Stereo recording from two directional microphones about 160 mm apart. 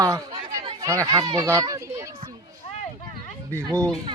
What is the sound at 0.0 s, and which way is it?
Chatter, 20° right (ahead or behind).